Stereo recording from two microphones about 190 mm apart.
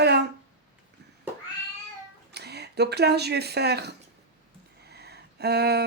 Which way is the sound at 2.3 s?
60° right (ahead or behind).